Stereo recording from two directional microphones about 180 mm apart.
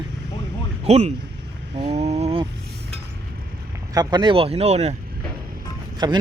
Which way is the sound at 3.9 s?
20° right (ahead or behind).